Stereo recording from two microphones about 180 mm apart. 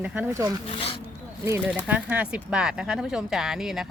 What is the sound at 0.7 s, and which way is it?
Speech, 30° left (ahead or behind).